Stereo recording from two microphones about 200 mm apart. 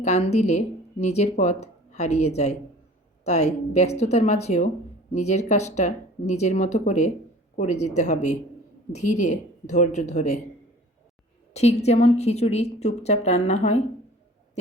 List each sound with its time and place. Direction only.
0.0 s speech: 35° left (ahead or behind)
11.5 s speech: 35° left (ahead or behind)